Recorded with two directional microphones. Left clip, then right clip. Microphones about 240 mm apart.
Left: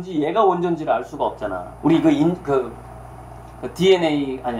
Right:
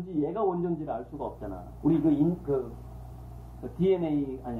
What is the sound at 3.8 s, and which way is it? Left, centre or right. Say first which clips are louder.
Speech: left 11 dB; left.